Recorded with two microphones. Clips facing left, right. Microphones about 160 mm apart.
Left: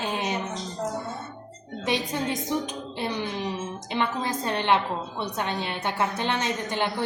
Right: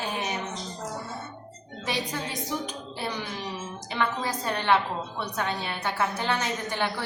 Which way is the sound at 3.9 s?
20° left (ahead or behind).